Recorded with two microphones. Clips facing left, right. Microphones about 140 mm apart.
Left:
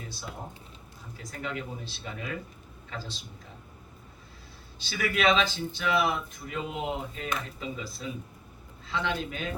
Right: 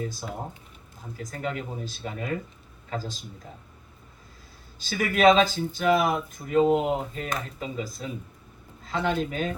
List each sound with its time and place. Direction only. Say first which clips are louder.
1.2 s speech: right 4 dB; 45° right (ahead or behind)
4.8 s speech: right 6 dB; 45° right (ahead or behind)